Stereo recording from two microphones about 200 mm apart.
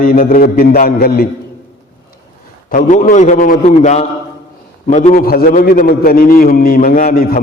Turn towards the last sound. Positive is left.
turn(degrees=45)  # may be behind; listen again after turning